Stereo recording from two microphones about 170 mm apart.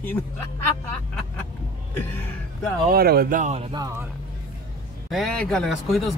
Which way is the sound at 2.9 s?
65° right (ahead or behind).